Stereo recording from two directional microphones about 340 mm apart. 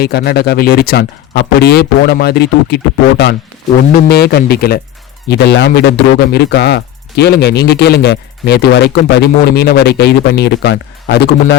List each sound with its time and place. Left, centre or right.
0.0 s speech: left